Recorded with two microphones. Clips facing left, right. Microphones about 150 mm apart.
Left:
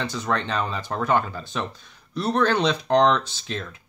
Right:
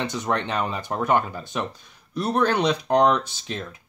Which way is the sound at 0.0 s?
20° right (ahead or behind).